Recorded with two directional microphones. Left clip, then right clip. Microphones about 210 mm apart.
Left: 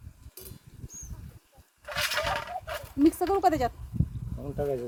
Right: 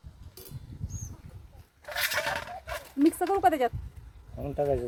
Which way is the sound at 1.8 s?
30° right (ahead or behind).